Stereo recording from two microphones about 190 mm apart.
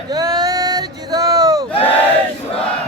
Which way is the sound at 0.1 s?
20° right (ahead or behind).